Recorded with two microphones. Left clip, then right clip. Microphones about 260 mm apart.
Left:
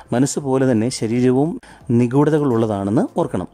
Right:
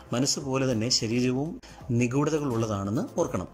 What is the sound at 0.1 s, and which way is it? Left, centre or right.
Speech, left.